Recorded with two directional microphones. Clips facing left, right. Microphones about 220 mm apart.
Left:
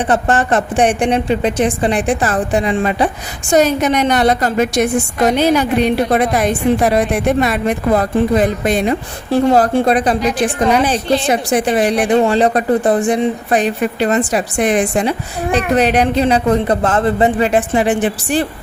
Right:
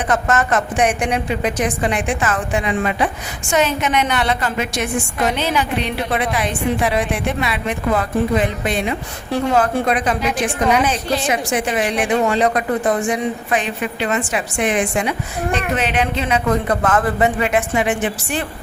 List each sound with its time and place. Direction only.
0.1 s a woman's voice: 30° left (ahead or behind)